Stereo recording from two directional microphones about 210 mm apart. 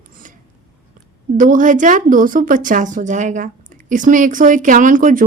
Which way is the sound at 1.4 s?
40° right (ahead or behind).